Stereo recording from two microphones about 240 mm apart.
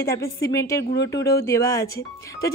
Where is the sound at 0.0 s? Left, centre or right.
Centre.